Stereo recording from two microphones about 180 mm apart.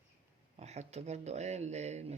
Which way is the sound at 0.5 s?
35° right (ahead or behind).